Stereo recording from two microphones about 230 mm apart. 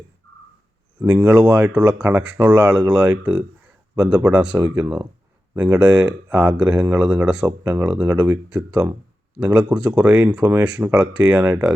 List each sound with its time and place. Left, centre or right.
1.0 s speech: centre
1.7 s speech: centre
2.9 s speech: centre
3.9 s speech: centre
11.3 s speech: centre